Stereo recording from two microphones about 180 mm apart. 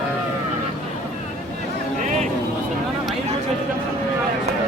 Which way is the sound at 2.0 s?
45° right (ahead or behind).